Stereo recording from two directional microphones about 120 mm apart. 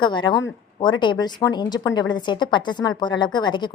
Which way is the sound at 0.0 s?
40° left (ahead or behind).